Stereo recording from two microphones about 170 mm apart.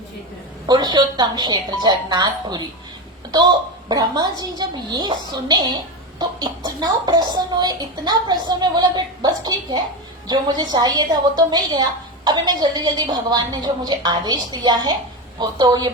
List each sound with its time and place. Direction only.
0.7 s a woman's voice: 25° right (ahead or behind)